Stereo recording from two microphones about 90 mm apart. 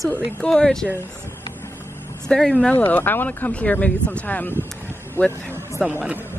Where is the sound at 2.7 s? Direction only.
25° left (ahead or behind).